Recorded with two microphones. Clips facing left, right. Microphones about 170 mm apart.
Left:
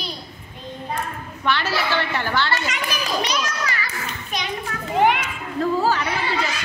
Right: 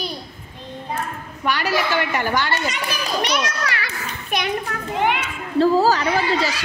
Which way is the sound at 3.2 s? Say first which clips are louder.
Right 2 dB; 65° right (ahead or behind).